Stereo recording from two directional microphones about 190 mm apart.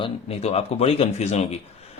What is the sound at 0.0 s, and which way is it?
Speech, 30° left (ahead or behind).